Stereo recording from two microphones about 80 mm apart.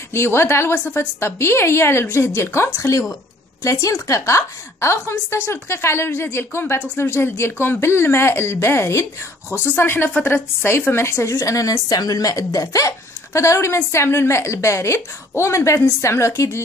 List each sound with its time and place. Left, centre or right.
0.1 s a woman's voice: left